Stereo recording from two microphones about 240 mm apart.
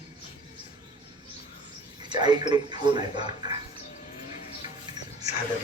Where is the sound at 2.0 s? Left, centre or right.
Centre.